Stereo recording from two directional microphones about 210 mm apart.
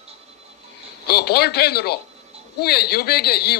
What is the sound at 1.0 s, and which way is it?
A man's voice, 50° left (ahead or behind).